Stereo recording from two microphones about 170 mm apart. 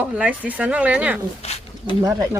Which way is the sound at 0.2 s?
5° right (ahead or behind).